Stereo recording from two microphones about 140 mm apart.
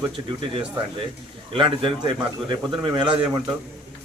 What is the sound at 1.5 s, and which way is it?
A man's voice, 35° right (ahead or behind).